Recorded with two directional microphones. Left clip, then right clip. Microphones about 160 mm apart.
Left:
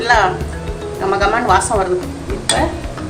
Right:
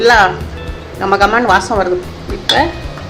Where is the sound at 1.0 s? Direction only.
75° right (ahead or behind).